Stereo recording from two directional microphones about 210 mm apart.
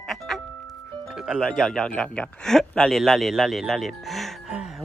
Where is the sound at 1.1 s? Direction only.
5° right (ahead or behind).